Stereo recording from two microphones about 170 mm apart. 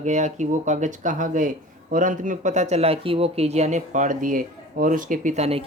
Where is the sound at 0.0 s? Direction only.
45° right (ahead or behind).